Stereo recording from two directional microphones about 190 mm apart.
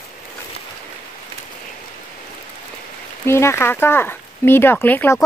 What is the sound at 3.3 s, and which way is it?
Speech, 15° left (ahead or behind).